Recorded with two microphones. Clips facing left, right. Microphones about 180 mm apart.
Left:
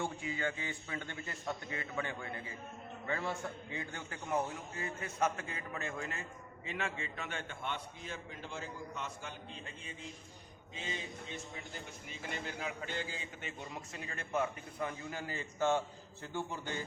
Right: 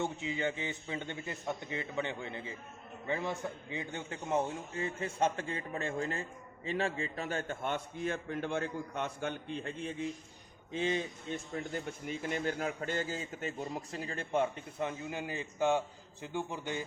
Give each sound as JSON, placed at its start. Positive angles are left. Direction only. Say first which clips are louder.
{"t": 0.0, "sound": "a man's voice", "louder": "right 3 dB", "side_deg": -20}
{"t": 10.8, "sound": "a man's voice", "louder": "right 10 dB", "side_deg": -55}